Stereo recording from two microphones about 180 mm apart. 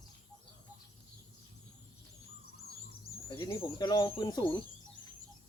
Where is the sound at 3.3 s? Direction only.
20° left (ahead or behind).